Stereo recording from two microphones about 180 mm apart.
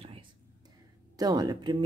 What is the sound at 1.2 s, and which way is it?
Speech, 20° right (ahead or behind).